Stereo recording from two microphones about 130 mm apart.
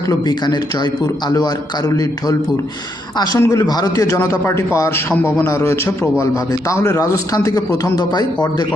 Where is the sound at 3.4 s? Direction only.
20° left (ahead or behind).